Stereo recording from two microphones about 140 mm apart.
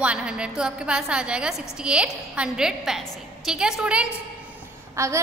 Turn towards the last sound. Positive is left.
turn(degrees=-20)  # may be behind; listen again after turning